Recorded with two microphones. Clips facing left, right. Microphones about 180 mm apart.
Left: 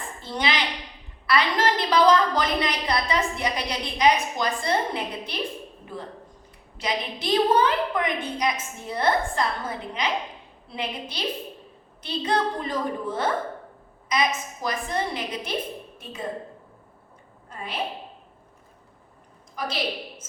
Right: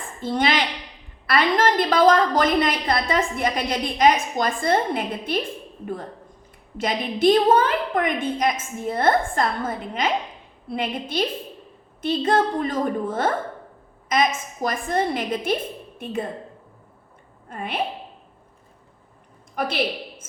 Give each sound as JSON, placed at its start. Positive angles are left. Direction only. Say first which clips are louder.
{"t": 0.2, "sound": "a woman's voice", "louder": "right 5 dB", "side_deg": -50}
{"t": 6.7, "sound": "a woman's voice", "louder": "right 5 dB", "side_deg": -50}
{"t": 17.5, "sound": "a woman's voice", "louder": "right 5 dB", "side_deg": -55}
{"t": 19.5, "sound": "a woman's voice", "louder": "right 5 dB", "side_deg": -60}